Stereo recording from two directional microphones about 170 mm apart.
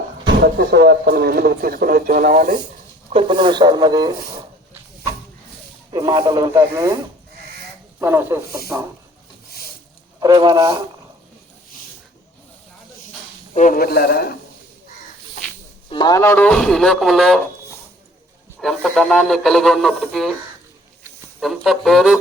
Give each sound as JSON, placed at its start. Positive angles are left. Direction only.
{"t": 0.3, "sound": "speech", "side_deg": -75}
{"t": 3.1, "sound": "speech", "side_deg": -30}
{"t": 5.9, "sound": "speech", "side_deg": -25}
{"t": 7.9, "sound": "speech", "side_deg": -10}
{"t": 10.2, "sound": "speech", "side_deg": -25}
{"t": 13.5, "sound": "a man's voice", "side_deg": 50}
{"t": 15.9, "sound": "speech", "side_deg": 25}
{"t": 18.6, "sound": "speech", "side_deg": 0}
{"t": 21.4, "sound": "speech", "side_deg": 0}